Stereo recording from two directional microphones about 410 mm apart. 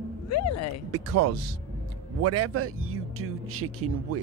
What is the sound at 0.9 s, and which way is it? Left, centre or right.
Speech, right.